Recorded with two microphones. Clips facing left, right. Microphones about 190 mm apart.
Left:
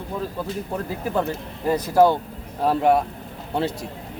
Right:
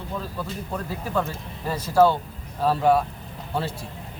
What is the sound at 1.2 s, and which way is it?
A man's voice, 15° left (ahead or behind).